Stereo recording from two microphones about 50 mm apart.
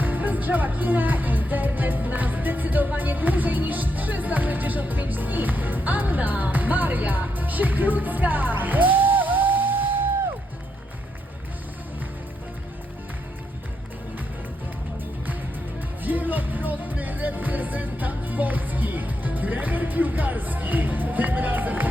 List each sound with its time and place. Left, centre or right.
0.0 s music: right
16.0 s music: right